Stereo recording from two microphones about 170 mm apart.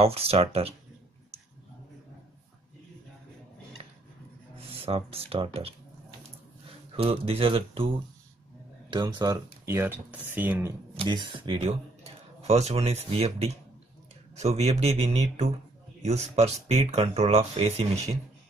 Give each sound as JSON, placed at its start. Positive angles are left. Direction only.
{"t": 0.0, "sound": "speech", "side_deg": -35}
{"t": 4.6, "sound": "speech", "side_deg": -35}
{"t": 7.0, "sound": "speech", "side_deg": -35}
{"t": 8.9, "sound": "speech", "side_deg": -25}
{"t": 11.0, "sound": "speech", "side_deg": -25}